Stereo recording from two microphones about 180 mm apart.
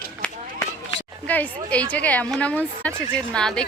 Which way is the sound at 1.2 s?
10° left (ahead or behind).